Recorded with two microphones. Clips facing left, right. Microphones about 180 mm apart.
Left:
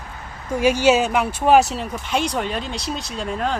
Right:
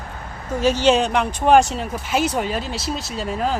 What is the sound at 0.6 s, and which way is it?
Speech, 10° left (ahead or behind).